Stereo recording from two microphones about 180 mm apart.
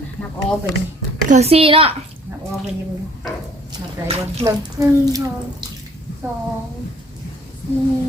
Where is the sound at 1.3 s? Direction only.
35° right (ahead or behind).